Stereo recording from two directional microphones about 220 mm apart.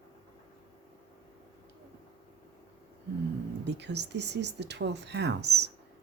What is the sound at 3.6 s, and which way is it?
Speech, 50° right (ahead or behind).